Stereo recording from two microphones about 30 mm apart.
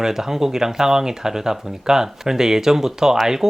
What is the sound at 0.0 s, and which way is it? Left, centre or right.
Speech, centre.